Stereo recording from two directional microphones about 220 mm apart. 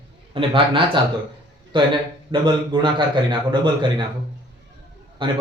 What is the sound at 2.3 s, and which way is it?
Speech, 20° right (ahead or behind).